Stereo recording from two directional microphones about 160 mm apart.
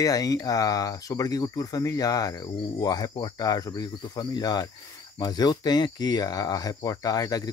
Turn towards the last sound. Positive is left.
turn(degrees=25)  # may be behind; listen again after turning